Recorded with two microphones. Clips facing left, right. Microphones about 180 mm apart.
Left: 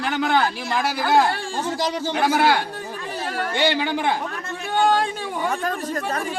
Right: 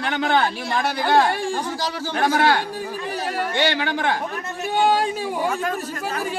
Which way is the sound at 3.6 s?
15° left (ahead or behind).